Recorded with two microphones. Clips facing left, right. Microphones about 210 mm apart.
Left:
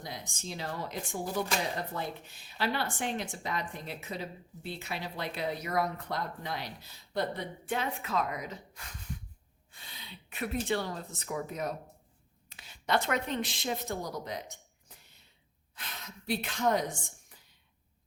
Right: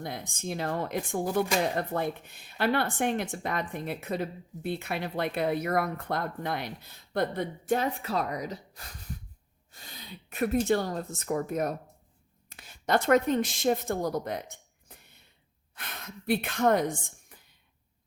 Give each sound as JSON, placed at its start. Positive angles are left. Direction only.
{"t": 0.0, "sound": "speech", "side_deg": -55}